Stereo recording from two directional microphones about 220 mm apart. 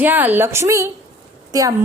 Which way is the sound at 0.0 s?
10° right (ahead or behind).